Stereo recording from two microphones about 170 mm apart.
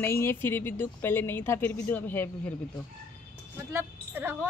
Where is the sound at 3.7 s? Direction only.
15° right (ahead or behind).